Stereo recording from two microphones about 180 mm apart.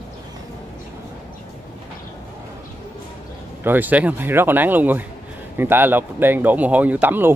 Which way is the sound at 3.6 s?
10° right (ahead or behind).